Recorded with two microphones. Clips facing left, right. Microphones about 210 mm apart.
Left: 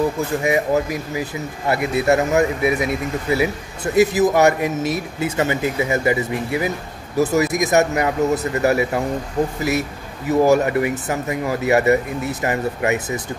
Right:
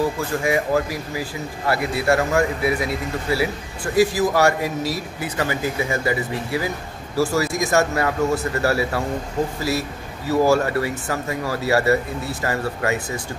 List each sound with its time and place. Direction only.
0.4 s speech: 20° left (ahead or behind)